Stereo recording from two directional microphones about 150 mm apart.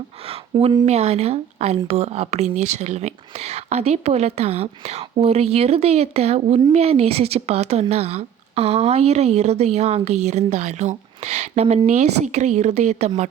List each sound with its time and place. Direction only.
0.5 s speech: 30° right (ahead or behind)
0.9 s a woman's voice: 45° right (ahead or behind)